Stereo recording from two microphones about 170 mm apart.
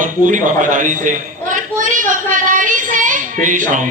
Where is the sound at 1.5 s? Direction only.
50° right (ahead or behind).